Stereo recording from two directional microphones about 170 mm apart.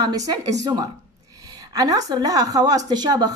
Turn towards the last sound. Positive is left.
turn(degrees=-25)  # may be behind; listen again after turning